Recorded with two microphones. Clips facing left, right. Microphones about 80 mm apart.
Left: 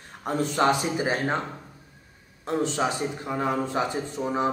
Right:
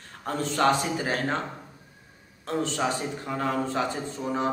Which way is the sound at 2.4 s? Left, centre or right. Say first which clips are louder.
Left 2 dB; centre.